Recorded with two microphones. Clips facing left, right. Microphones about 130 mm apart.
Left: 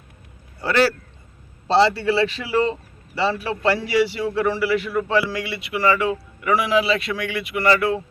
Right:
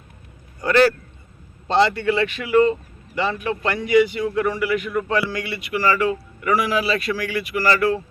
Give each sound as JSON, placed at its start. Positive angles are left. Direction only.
{"t": 1.6, "sound": "a man's voice", "side_deg": 30}